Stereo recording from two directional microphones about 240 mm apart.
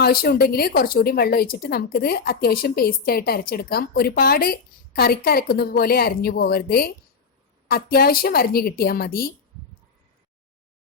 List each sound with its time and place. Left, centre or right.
0.0 s speech: left